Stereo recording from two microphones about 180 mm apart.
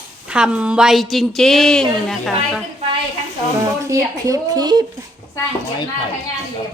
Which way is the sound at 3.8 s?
15° right (ahead or behind).